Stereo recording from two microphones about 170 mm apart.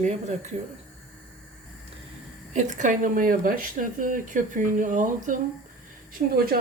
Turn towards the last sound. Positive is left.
turn(degrees=-60)  # may be behind; listen again after turning